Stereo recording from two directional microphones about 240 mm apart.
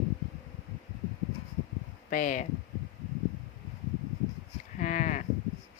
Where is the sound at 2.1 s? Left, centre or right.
Left.